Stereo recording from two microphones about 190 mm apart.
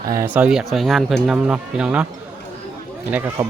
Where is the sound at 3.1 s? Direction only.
10° right (ahead or behind).